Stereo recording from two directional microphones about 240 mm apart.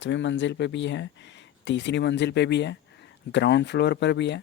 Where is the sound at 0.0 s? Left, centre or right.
Left.